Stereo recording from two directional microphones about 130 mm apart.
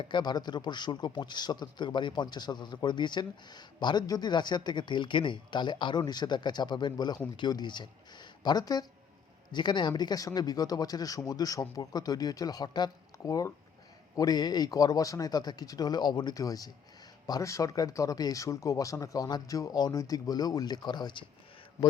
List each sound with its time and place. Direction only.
0.0 s a man's voice: 35° left (ahead or behind)